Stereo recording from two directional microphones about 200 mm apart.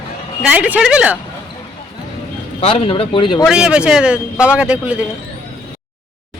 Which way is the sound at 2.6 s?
30° left (ahead or behind).